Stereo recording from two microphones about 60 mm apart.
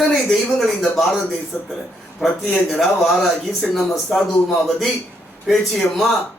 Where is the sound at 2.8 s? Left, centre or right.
Centre.